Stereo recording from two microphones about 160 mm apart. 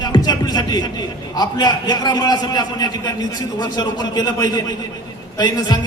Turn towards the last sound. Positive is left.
turn(degrees=25)  # may be behind; listen again after turning